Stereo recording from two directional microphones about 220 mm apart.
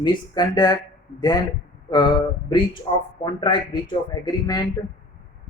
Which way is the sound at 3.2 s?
20° left (ahead or behind).